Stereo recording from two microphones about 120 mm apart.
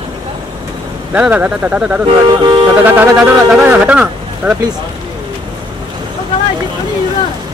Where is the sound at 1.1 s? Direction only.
10° right (ahead or behind).